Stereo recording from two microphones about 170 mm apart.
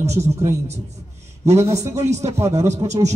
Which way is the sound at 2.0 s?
40° right (ahead or behind).